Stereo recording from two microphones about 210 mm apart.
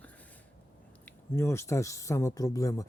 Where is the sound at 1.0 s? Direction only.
10° left (ahead or behind).